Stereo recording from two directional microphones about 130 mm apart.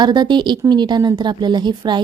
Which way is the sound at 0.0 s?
35° right (ahead or behind).